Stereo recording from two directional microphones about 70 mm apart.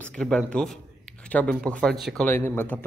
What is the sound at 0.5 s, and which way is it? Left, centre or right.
Speech, centre.